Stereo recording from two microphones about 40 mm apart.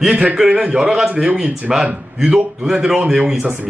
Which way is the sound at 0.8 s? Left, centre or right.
Centre.